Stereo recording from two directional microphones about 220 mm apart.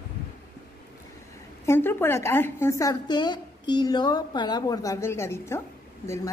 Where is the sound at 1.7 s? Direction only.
10° left (ahead or behind).